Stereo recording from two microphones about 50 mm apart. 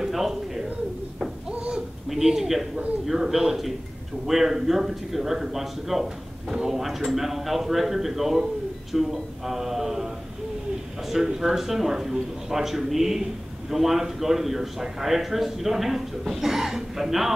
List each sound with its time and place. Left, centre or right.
0.0 s bird: centre
1.2 s a sound: right
2.0 s a man's voice: centre
11.1 s a man's voice: centre